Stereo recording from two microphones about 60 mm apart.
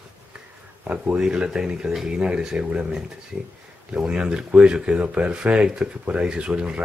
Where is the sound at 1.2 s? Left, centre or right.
Centre.